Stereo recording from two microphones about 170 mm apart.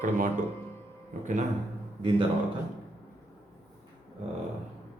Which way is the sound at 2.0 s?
30° right (ahead or behind).